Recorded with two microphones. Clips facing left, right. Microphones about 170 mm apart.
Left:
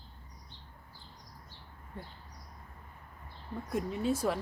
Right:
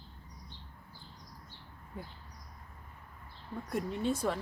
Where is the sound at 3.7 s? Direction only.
5° left (ahead or behind).